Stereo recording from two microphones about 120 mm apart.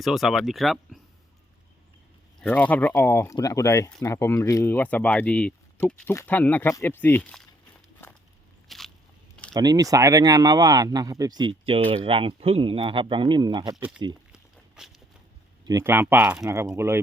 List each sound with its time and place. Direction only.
0.0 s speech: centre (ahead or behind)
2.4 s speech: 15° left (ahead or behind)
8.7 s biting: centre (ahead or behind)
9.5 s speech: 30° right (ahead or behind)
14.8 s speech: 5° right (ahead or behind)
15.8 s speech: 20° right (ahead or behind)
16.4 s speech: 25° right (ahead or behind)